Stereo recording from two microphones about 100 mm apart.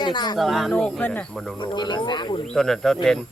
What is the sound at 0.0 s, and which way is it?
Speech, 50° left (ahead or behind).